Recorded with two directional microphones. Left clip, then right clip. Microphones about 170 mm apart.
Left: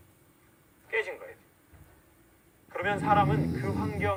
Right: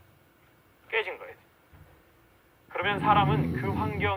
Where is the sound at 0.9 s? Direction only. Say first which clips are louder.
Right 2 dB; 20° right (ahead or behind).